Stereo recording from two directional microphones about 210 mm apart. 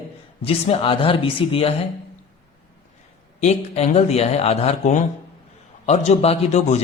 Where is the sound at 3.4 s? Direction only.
30° left (ahead or behind).